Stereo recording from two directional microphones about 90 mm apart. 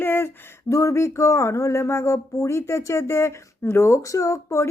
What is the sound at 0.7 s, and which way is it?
Speech, 35° left (ahead or behind).